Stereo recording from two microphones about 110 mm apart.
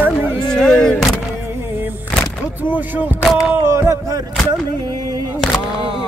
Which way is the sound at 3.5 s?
25° right (ahead or behind).